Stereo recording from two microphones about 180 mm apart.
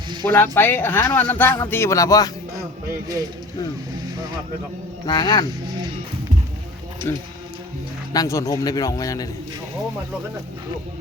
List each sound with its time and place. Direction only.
0.3 s a man's voice: 10° left (ahead or behind)
5.0 s a man's voice: 25° left (ahead or behind)
7.1 s a man's voice: 15° left (ahead or behind)